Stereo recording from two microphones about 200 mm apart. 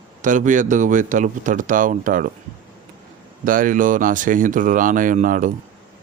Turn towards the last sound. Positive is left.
turn(degrees=-40)  # may be behind; listen again after turning